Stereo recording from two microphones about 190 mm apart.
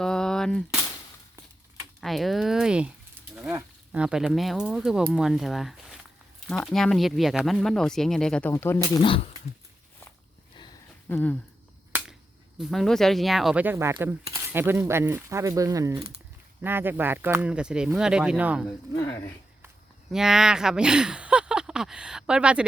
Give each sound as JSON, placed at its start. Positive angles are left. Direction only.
{"t": 0.0, "sound": "cap gun", "side_deg": 5}
{"t": 2.0, "sound": "speech", "side_deg": 0}
{"t": 9.0, "sound": "speech", "side_deg": 30}
{"t": 11.1, "sound": "speech", "side_deg": 10}
{"t": 11.9, "sound": "finger snapping", "side_deg": -10}
{"t": 12.5, "sound": "speech", "side_deg": 0}
{"t": 18.9, "sound": "speech", "side_deg": 15}
{"t": 20.1, "sound": "speech", "side_deg": 0}